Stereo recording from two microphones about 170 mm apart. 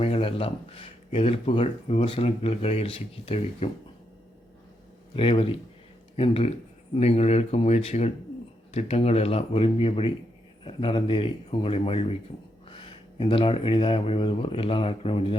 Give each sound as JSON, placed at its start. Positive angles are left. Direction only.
{"t": 0.0, "sound": "speech", "side_deg": 35}
{"t": 5.1, "sound": "speech", "side_deg": 35}